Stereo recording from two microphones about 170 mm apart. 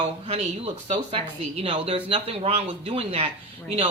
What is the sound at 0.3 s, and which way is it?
Speech, 35° right (ahead or behind).